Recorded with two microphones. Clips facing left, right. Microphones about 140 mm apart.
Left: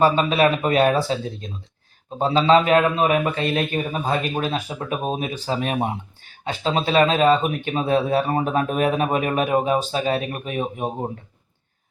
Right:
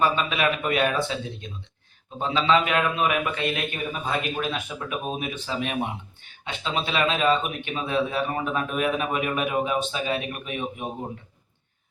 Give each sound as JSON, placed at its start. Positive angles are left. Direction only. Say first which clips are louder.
{"t": 0.0, "sound": "speech", "louder": "left 6 dB", "side_deg": 35}